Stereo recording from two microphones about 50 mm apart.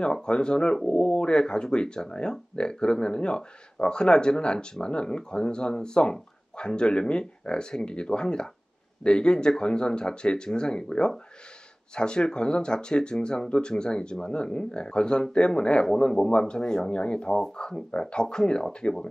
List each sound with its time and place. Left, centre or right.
0.0 s speech: centre